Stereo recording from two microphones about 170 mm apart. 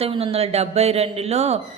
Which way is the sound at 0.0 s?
35° right (ahead or behind).